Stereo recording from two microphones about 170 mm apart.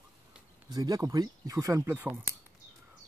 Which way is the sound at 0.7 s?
25° right (ahead or behind).